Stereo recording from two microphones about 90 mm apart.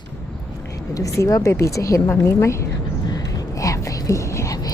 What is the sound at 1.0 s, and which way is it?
A woman's voice, 35° left (ahead or behind).